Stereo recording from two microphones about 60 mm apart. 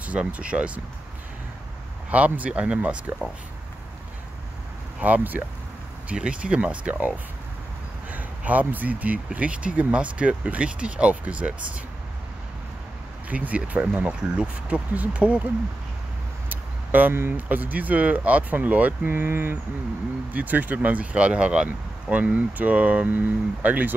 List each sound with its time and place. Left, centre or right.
0.0 s speech: right
2.0 s speech: right
5.0 s speech: right
6.0 s speech: centre
13.3 s speech: right
16.4 s speech: right